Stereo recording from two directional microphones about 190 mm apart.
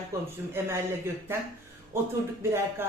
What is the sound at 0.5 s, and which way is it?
Speech, 10° right (ahead or behind).